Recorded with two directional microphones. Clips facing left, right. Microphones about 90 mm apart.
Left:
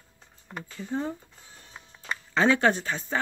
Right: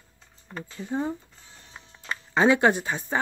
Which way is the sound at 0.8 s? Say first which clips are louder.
Right 2 dB; 15° right (ahead or behind).